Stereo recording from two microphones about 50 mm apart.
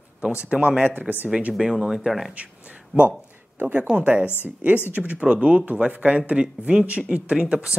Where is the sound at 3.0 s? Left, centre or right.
Right.